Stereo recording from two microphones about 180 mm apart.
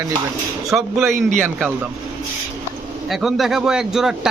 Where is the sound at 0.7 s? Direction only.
Centre (ahead or behind).